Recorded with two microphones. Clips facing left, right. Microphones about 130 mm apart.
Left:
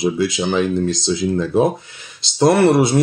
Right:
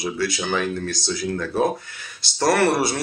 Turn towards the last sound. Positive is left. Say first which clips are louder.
# left 6 dB
turn(degrees=20)  # may be behind; listen again after turning